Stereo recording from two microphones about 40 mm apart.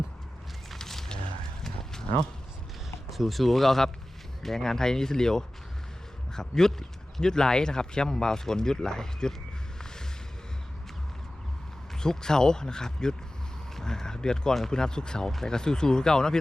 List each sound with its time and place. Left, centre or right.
0.8 s a sound: centre
1.6 s horse: centre
3.1 s speech: centre
11.9 s speech: centre